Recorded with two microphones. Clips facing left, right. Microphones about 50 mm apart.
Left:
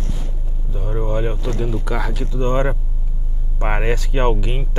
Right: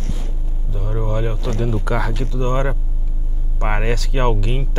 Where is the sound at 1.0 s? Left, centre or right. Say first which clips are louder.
Left 1 dB; left.